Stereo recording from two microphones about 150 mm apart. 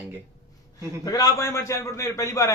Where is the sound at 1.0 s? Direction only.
25° left (ahead or behind).